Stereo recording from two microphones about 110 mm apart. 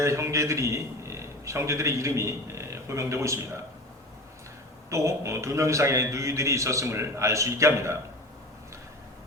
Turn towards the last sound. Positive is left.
turn(degrees=-25)  # may be behind; listen again after turning